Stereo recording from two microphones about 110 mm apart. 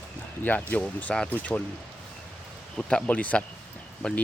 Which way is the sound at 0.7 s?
15° left (ahead or behind).